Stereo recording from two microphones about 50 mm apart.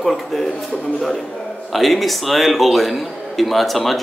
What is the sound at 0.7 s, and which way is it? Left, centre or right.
Speech, left.